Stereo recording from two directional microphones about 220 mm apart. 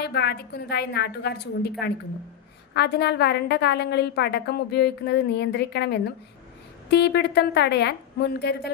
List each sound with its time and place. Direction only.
0.0 s a woman's voice: 50° left (ahead or behind)
2.7 s a woman's voice: 50° left (ahead or behind)